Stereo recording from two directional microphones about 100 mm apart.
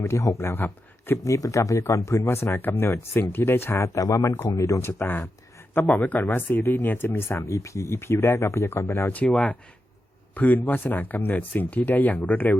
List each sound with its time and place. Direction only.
0.0 s speech: 30° left (ahead or behind)
1.2 s speech: 35° left (ahead or behind); by 12.5 s 15° left (ahead or behind)